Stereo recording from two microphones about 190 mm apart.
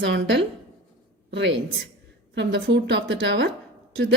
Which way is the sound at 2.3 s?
65° right (ahead or behind).